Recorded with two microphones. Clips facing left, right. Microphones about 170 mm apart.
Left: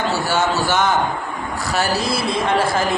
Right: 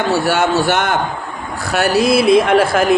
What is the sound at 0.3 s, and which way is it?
Speech, 65° right (ahead or behind).